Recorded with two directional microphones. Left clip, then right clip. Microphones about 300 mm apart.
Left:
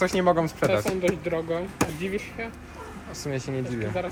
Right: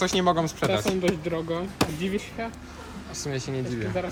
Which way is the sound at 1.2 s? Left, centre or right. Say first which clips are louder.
Left 1 dB; right.